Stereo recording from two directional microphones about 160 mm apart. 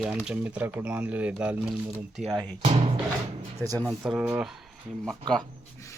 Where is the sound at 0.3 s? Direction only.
10° right (ahead or behind).